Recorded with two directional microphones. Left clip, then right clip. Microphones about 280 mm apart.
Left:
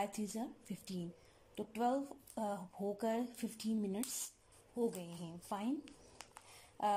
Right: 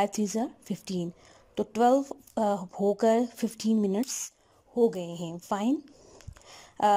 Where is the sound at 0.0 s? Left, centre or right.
Right.